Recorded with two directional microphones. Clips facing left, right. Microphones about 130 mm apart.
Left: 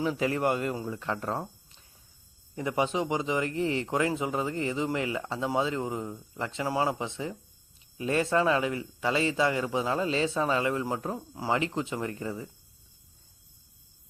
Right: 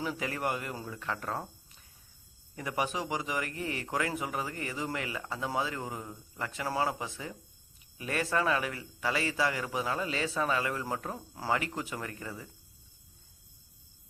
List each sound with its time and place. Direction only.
0.0 s speech: 25° left (ahead or behind)
2.6 s speech: 25° left (ahead or behind)